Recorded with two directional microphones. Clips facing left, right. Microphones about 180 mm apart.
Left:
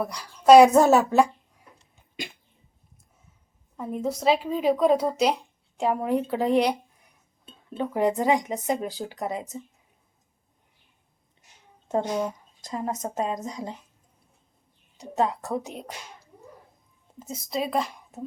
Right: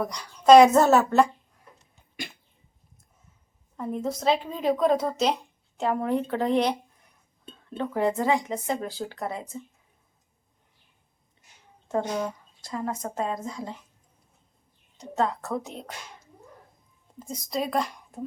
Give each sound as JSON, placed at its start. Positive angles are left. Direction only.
{"t": 0.0, "sound": "speech", "side_deg": 5}
{"t": 3.8, "sound": "speech", "side_deg": 5}
{"t": 11.9, "sound": "a woman's voice", "side_deg": 20}
{"t": 14.9, "sound": "speech", "side_deg": 15}
{"t": 17.2, "sound": "speech", "side_deg": 5}